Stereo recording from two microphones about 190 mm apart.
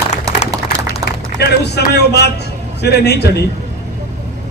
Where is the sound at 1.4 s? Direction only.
60° left (ahead or behind).